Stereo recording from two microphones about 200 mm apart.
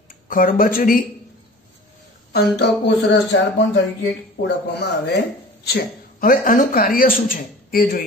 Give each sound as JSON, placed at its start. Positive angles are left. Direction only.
{"t": 0.1, "sound": "speech", "side_deg": 45}
{"t": 2.5, "sound": "speech", "side_deg": 60}